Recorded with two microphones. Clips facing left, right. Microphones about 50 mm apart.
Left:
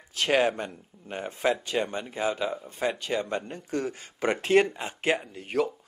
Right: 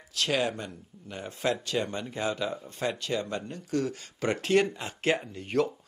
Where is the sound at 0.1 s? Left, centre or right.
Left.